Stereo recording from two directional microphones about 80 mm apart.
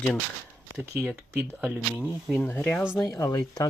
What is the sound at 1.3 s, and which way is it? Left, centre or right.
Speech, right.